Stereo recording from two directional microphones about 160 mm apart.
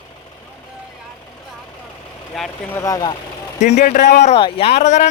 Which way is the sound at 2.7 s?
20° left (ahead or behind).